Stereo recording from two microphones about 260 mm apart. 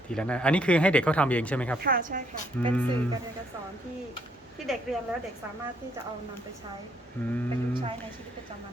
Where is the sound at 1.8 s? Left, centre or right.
Right.